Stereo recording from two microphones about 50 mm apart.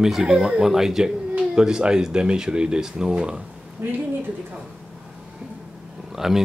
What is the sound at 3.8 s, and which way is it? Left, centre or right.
Speech, right.